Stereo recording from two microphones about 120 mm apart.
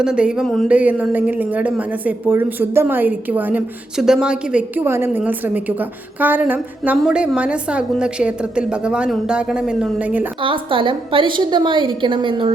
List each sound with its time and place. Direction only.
0.0 s a woman's voice: 5° right (ahead or behind)
0.4 s speech: 5° left (ahead or behind)
0.7 s a woman's voice: 15° right (ahead or behind)
10.4 s a woman's voice: 45° right (ahead or behind)